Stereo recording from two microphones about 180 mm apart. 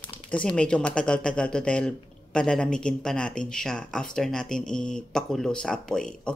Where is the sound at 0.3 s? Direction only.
5° left (ahead or behind).